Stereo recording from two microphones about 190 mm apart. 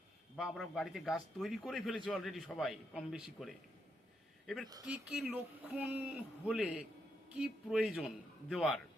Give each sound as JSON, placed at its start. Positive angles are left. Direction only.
{"t": 0.3, "sound": "a man's voice", "side_deg": 0}